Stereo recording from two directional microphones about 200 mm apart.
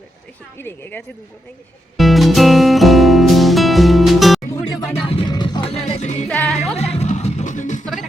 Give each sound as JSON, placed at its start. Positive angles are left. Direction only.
{"t": 0.6, "sound": "speech", "side_deg": 10}
{"t": 2.0, "sound": "music", "side_deg": 0}
{"t": 5.0, "sound": "music", "side_deg": 25}
{"t": 5.8, "sound": "music", "side_deg": 35}
{"t": 6.2, "sound": "music", "side_deg": 5}
{"t": 6.9, "sound": "music", "side_deg": 35}